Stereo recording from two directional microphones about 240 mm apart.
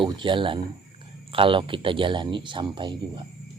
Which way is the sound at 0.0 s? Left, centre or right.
Right.